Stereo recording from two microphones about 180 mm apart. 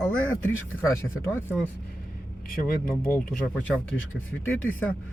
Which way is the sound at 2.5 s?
50° left (ahead or behind).